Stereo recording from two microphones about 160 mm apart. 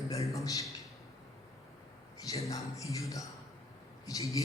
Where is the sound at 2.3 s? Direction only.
20° left (ahead or behind).